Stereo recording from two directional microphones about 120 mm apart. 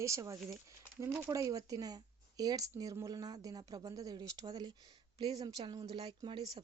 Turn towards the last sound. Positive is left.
turn(degrees=-40)  # may be behind; listen again after turning